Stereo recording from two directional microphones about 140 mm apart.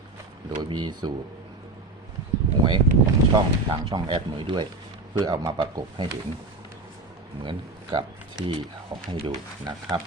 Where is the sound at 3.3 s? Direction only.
35° right (ahead or behind).